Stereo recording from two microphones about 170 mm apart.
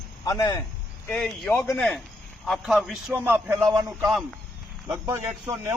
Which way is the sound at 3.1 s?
10° right (ahead or behind).